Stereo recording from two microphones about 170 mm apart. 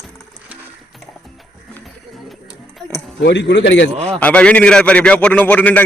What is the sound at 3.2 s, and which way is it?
Speech, 90° left.